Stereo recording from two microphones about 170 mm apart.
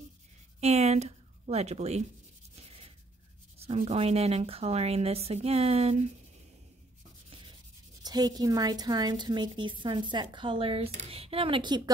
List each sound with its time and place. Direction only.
0.6 s a woman's voice: 40° right (ahead or behind)
3.5 s speech: 35° right (ahead or behind)
7.2 s sanding: 30° right (ahead or behind)
8.0 s a woman's voice: 25° right (ahead or behind)